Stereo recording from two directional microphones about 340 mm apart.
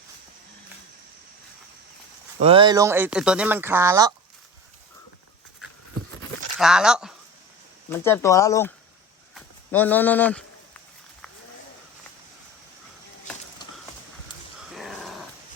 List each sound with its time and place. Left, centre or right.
2.4 s speech: centre
6.6 s speech: centre
14.6 s dog: centre